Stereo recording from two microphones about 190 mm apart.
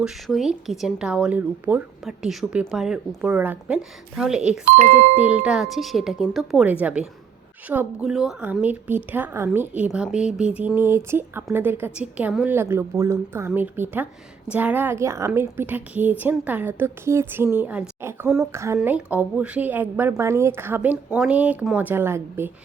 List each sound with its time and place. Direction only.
0.0 s a woman's voice: centre (ahead or behind)